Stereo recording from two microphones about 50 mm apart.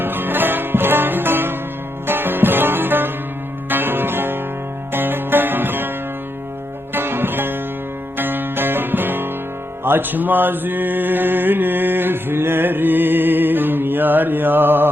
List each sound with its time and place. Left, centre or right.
0.0 s music: right
6.9 s music: right